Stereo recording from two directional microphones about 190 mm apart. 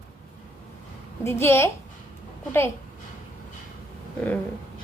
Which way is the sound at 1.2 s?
15° left (ahead or behind).